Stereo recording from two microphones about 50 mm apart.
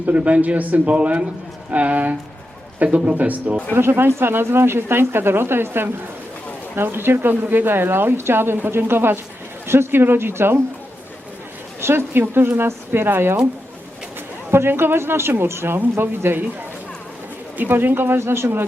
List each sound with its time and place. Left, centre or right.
0.0 s a man's voice: right
3.8 s speech: right
11.8 s speech: right
14.5 s speech: right
17.6 s speech: right